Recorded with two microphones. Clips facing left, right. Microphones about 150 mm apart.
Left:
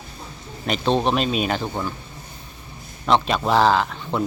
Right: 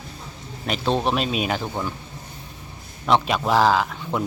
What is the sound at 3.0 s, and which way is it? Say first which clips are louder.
Speech: left 1 dB; 5° right (ahead or behind).